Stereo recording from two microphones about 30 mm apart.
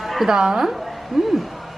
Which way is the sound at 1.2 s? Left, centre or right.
Centre.